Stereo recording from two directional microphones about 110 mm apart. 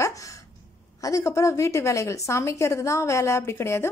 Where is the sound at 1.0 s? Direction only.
30° left (ahead or behind).